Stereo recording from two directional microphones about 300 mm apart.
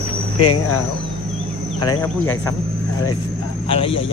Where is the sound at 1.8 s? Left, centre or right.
Centre.